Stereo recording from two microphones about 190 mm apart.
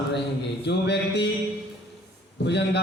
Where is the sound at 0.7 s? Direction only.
65° left (ahead or behind).